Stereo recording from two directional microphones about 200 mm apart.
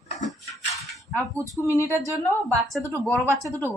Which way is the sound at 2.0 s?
15° right (ahead or behind).